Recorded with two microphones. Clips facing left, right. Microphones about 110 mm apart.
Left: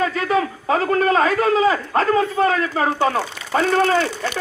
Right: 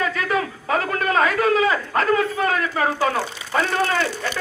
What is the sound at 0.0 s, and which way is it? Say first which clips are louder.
A man's voice: left 3 dB; 30° left (ahead or behind).